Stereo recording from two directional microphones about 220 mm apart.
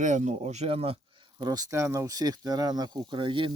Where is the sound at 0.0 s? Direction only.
35° right (ahead or behind).